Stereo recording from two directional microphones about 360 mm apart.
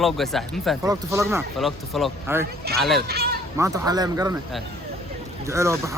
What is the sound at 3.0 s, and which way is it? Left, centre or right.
Speech, right.